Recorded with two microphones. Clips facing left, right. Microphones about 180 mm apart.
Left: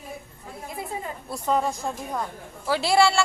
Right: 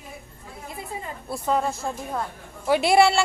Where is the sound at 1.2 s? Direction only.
5° right (ahead or behind).